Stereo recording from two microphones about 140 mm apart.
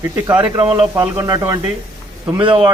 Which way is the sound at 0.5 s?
40° right (ahead or behind).